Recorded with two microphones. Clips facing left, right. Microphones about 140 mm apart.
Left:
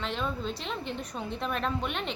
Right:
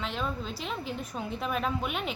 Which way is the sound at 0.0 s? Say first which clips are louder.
Left 1 dB; centre (ahead or behind).